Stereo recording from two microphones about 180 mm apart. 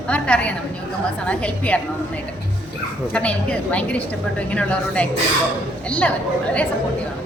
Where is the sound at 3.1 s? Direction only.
5° left (ahead or behind).